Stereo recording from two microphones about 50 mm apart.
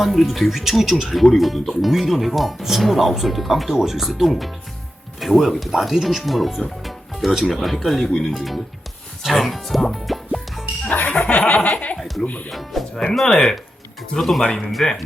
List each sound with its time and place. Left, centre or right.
0.0 s speech: centre
9.2 s music: centre
11.2 s laughter: left
11.9 s speech: centre
12.2 s laughter: left
12.5 s speech: centre
14.7 s speech: centre